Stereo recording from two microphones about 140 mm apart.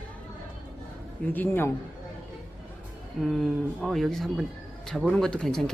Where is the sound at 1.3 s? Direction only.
15° left (ahead or behind).